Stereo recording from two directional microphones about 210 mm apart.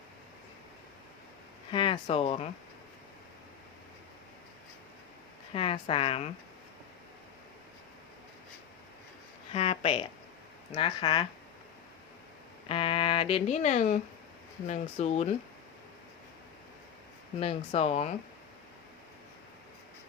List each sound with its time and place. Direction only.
1.7 s speech: 25° left (ahead or behind)
5.5 s speech: 25° left (ahead or behind)
9.5 s speech: 25° left (ahead or behind)
12.6 s speech: 25° left (ahead or behind)
17.4 s speech: 25° left (ahead or behind)